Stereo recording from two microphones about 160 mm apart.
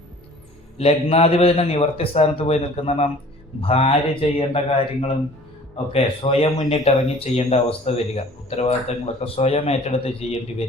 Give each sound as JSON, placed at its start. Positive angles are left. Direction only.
{"t": 0.8, "sound": "a man's voice", "side_deg": 40}